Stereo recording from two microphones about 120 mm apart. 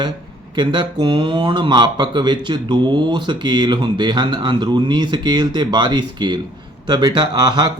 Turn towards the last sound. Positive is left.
turn(degrees=-35)  # may be behind; listen again after turning